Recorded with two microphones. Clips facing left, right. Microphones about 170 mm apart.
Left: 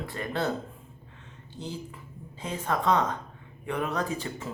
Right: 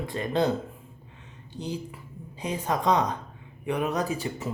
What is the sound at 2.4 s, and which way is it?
Speech, 15° right (ahead or behind).